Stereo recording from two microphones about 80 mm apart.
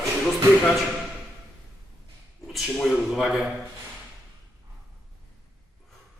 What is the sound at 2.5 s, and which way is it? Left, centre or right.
Speech, centre.